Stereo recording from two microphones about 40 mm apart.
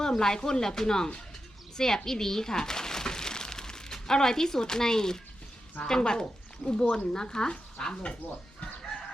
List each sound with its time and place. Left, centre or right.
0.0 s speech: centre
1.7 s a sound: centre
5.8 s speech: centre